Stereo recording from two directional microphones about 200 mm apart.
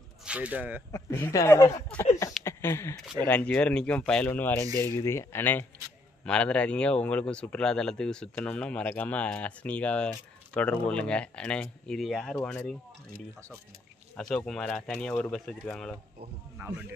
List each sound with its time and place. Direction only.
0.2 s speech: 5° right (ahead or behind)
0.9 s speech: 15° left (ahead or behind)
2.4 s a sound: 15° left (ahead or behind)
3.3 s speech: 10° left (ahead or behind)
14.1 s speech: 5° left (ahead or behind)
16.6 s speech: 15° right (ahead or behind)